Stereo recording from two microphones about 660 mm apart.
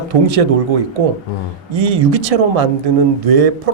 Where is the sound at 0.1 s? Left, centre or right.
Right.